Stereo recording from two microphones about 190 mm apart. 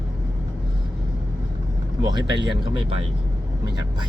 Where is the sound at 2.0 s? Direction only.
25° right (ahead or behind).